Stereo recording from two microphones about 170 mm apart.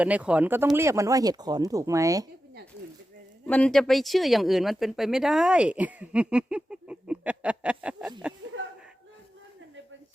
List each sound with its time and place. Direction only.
0.0 s speech: 5° right (ahead or behind)
3.4 s speech: 5° left (ahead or behind)